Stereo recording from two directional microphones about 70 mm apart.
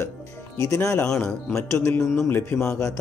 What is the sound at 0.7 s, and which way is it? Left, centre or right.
A man's voice, left.